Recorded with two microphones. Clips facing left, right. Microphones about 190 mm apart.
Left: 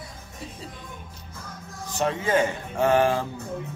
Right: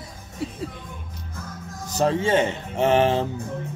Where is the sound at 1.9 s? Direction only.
35° right (ahead or behind).